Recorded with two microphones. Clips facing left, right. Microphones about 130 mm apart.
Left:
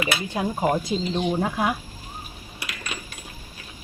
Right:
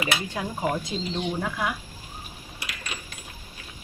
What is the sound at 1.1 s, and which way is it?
Speech, 30° left (ahead or behind).